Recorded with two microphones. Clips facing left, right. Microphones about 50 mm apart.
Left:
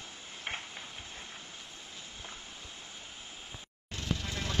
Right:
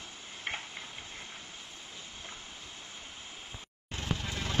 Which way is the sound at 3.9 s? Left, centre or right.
Right.